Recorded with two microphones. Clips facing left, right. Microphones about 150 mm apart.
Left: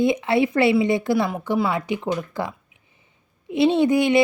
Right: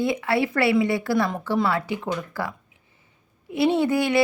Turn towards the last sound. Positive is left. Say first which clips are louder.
# left 3 dB
turn(degrees=20)  # may be behind; listen again after turning